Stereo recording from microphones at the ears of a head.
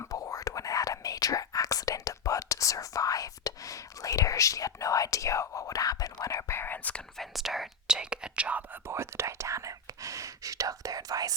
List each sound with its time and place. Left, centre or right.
0.0 s whispering: left
7.2 s whispering: centre
8.9 s whispering: right